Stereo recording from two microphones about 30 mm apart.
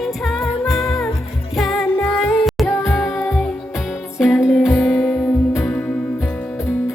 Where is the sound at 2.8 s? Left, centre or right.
Centre.